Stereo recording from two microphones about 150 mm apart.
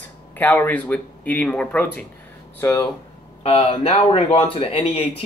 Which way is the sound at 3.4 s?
40° left (ahead or behind).